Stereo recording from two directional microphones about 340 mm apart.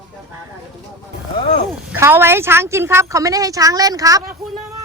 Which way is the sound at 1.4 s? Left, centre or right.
Centre.